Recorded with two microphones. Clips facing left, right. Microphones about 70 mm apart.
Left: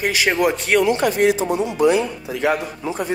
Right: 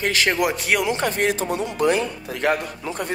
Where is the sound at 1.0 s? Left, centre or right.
Right.